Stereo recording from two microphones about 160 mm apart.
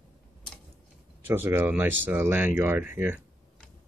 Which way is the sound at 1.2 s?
15° right (ahead or behind).